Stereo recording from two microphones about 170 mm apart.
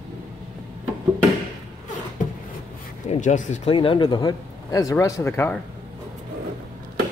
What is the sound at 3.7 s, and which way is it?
Speech, 30° left (ahead or behind).